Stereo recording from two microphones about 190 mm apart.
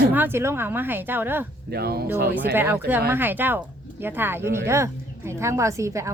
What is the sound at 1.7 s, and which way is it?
Speech, 55° right (ahead or behind).